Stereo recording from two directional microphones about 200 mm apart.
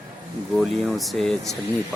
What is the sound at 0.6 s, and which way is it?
Speech, centre (ahead or behind).